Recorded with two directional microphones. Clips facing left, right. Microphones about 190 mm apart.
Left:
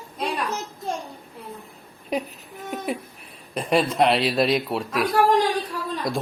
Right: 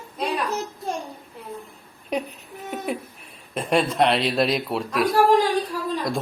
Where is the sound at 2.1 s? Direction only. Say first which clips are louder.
Even; centre (ahead or behind).